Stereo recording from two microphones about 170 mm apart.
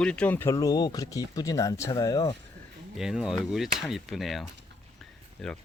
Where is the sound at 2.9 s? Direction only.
5° right (ahead or behind).